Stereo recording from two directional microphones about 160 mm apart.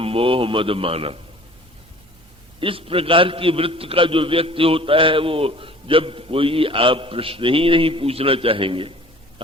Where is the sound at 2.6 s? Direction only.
35° right (ahead or behind).